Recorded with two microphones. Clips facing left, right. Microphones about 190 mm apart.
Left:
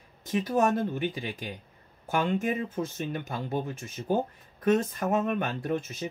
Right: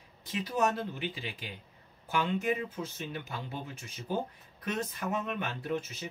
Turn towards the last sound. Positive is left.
turn(degrees=50)  # may be behind; listen again after turning